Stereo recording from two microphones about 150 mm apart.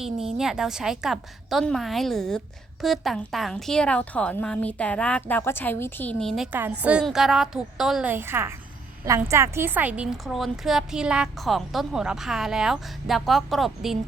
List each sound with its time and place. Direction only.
0.0 s a woman's voice: centre (ahead or behind)
6.5 s a woman's voice: 10° right (ahead or behind)
8.1 s a woman's voice: 15° right (ahead or behind)